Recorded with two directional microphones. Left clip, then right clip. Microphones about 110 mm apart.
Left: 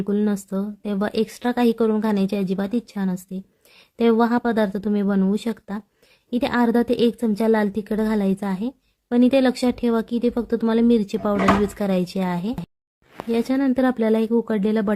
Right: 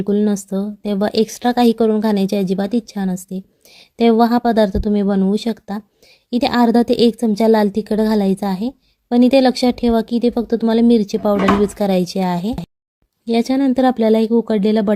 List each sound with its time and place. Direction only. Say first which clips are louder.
0.0 s a woman's voice: right 6 dB; 30° right (ahead or behind)